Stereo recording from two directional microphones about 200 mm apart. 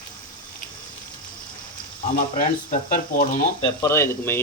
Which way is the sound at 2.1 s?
40° left (ahead or behind).